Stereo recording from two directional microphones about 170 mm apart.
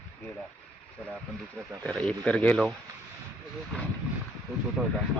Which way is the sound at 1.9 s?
5° left (ahead or behind).